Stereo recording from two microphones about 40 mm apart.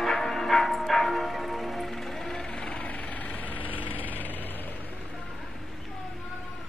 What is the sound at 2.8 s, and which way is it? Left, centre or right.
Vehicle, left.